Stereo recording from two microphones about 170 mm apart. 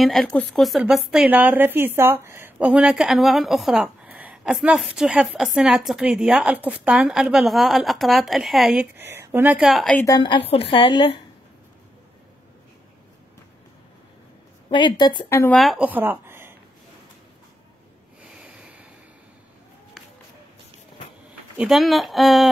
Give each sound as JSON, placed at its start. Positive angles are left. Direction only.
{"t": 0.0, "sound": "speech", "side_deg": 0}
{"t": 10.0, "sound": "speech", "side_deg": 25}
{"t": 14.7, "sound": "speech", "side_deg": 30}
{"t": 15.2, "sound": "speech", "side_deg": 15}
{"t": 15.5, "sound": "speech", "side_deg": 0}
{"t": 18.3, "sound": "a sound", "side_deg": -5}
{"t": 21.5, "sound": "speech", "side_deg": 0}